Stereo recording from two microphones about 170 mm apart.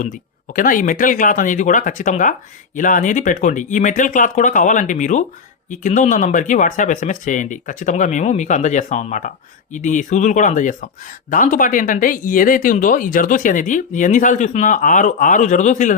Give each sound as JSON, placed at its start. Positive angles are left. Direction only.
{"t": 0.0, "sound": "speech", "side_deg": 50}